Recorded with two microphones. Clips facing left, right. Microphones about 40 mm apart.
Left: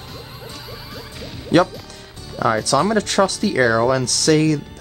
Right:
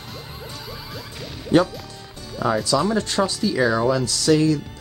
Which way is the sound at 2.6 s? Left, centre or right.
Left.